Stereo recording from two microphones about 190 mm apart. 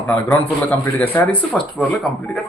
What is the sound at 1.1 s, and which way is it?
Speech, 10° left (ahead or behind).